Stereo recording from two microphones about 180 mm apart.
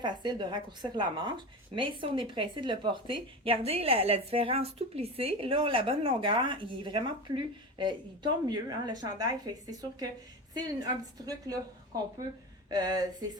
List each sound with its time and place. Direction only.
0.0 s a woman's voice: 25° right (ahead or behind)
12.7 s a woman's voice: 20° right (ahead or behind)